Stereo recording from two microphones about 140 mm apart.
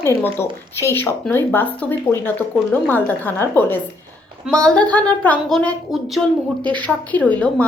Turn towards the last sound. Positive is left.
turn(degrees=10)  # may be behind; listen again after turning